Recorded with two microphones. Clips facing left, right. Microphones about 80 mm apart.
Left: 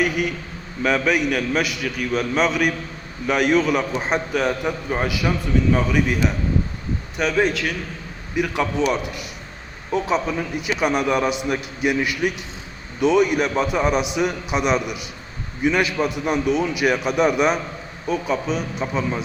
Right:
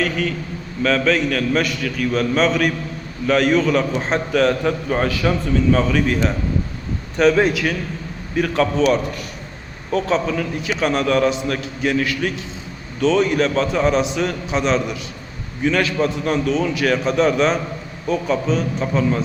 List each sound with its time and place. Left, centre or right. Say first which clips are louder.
0.0 s a man's voice: even; centre
7.4 s a man's voice: right 3 dB; centre
8.4 s a man's voice: right 4 dB; centre